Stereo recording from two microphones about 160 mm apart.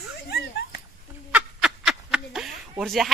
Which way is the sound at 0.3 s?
90° left.